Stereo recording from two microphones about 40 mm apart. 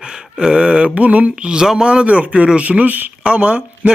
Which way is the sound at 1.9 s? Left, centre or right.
Right.